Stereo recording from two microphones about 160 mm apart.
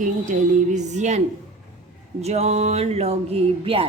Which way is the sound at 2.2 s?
40° right (ahead or behind).